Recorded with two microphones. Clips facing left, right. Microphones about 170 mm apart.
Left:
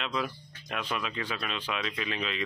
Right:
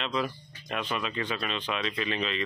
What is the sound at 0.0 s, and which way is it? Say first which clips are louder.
Speech: right 2 dB; 5° left (ahead or behind).